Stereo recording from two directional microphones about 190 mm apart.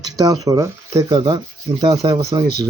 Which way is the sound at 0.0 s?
20° right (ahead or behind).